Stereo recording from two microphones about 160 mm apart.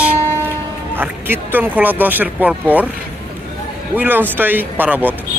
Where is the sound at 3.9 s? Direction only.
10° right (ahead or behind).